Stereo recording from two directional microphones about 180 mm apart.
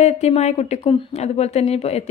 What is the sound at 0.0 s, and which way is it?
Speech, 40° left (ahead or behind).